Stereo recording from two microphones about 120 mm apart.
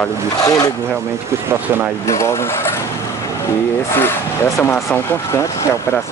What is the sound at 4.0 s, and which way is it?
Speech, 20° left (ahead or behind).